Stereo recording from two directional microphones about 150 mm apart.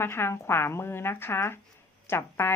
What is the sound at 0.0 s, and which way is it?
Speech, 15° left (ahead or behind).